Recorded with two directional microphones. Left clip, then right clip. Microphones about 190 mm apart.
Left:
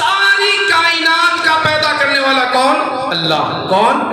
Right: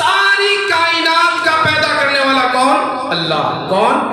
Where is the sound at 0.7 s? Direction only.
40° left (ahead or behind).